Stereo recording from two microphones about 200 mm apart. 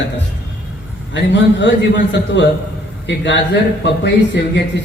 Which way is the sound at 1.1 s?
60° left (ahead or behind).